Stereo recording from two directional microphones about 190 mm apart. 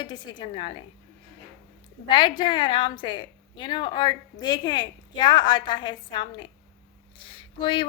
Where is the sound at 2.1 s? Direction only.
25° left (ahead or behind).